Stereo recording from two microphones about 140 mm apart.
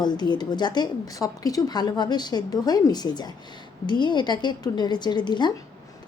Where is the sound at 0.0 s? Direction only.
30° left (ahead or behind).